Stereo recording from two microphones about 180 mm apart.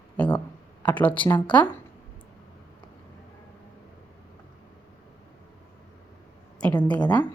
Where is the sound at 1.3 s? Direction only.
25° left (ahead or behind).